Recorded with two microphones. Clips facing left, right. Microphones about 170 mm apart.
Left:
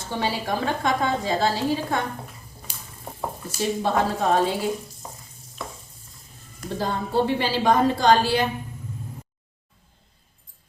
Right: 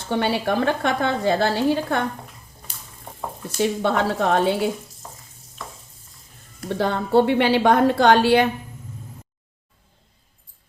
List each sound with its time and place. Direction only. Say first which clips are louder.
0.1 s a woman's voice: right 5 dB; 65° right (ahead or behind)
2.6 s boiling: left 2 dB; 10° left (ahead or behind)
3.6 s a woman's voice: right 2 dB; 70° right (ahead or behind)
6.7 s a woman's voice: right 5 dB; 65° right (ahead or behind)